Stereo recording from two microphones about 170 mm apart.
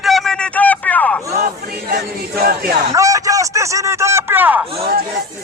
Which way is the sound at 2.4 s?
60° right (ahead or behind).